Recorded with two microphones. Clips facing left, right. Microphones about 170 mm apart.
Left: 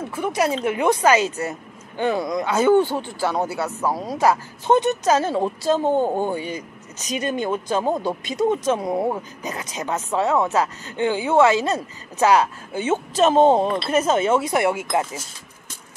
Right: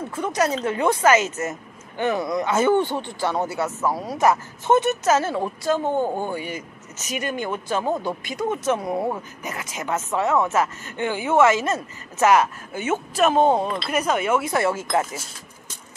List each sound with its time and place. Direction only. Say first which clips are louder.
0.1 s speech: left 1 dB; 10° left (ahead or behind)